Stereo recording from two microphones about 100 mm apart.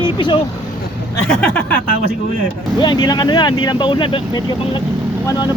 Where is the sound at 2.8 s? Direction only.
45° left (ahead or behind).